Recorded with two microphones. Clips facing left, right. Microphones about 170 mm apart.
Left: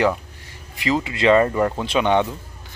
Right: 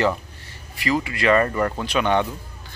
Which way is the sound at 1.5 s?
10° left (ahead or behind).